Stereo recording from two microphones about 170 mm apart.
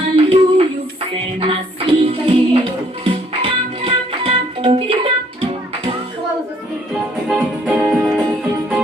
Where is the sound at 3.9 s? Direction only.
35° right (ahead or behind).